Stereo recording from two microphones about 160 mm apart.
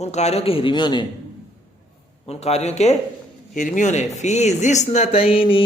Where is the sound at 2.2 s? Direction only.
40° left (ahead or behind).